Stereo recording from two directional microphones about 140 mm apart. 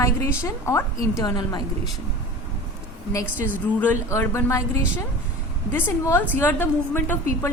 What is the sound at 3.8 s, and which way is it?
Speech, 15° left (ahead or behind).